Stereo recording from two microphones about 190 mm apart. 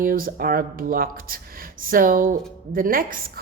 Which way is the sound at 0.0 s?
50° right (ahead or behind).